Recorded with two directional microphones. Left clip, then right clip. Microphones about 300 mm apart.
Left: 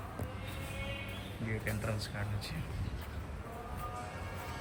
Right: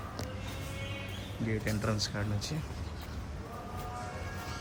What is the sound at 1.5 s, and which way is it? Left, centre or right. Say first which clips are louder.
Speech: right 4 dB; centre.